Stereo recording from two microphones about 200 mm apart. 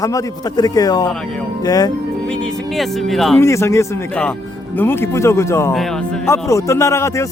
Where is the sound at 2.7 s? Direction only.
Centre (ahead or behind).